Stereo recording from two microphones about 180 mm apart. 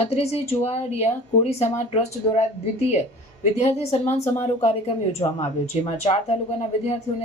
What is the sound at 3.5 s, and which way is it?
Speech, 40° left (ahead or behind).